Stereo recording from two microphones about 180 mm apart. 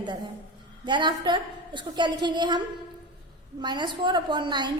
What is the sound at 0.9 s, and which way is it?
A woman's voice, 25° right (ahead or behind).